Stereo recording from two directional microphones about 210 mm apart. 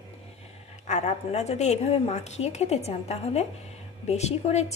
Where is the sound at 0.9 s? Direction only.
35° left (ahead or behind).